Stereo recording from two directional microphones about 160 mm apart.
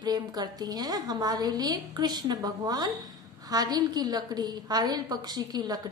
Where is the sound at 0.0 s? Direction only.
25° right (ahead or behind).